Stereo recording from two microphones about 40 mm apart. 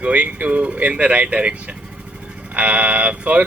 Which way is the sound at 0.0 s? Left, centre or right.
Right.